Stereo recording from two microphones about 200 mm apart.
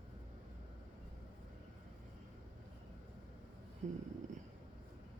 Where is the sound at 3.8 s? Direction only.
35° right (ahead or behind).